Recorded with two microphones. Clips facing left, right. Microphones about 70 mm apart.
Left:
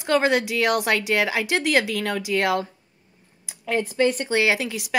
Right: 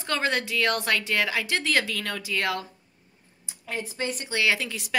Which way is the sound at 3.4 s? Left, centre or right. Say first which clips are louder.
Left 9 dB; left.